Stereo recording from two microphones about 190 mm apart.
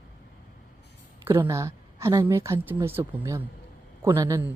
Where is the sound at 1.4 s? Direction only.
15° right (ahead or behind).